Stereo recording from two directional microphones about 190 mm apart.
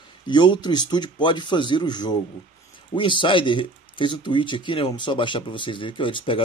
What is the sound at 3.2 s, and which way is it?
Speech, 25° left (ahead or behind).